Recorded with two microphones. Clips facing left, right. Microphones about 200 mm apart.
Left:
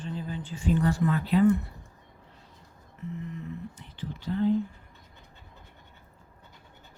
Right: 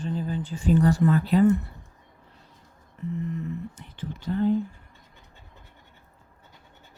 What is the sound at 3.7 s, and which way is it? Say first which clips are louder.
Speech: right 2 dB; 50° right (ahead or behind).